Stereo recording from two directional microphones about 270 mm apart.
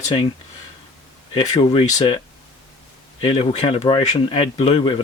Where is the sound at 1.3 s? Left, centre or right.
Centre.